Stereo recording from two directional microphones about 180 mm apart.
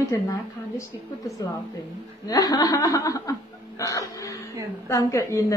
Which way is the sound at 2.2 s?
20° left (ahead or behind).